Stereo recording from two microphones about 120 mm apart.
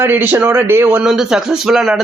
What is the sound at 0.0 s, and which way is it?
A man's voice, 15° right (ahead or behind).